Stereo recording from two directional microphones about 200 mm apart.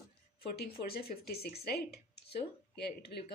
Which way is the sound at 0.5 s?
50° left (ahead or behind).